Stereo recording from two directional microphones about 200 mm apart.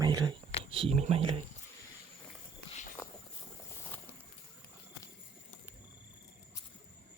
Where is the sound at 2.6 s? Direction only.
35° left (ahead or behind).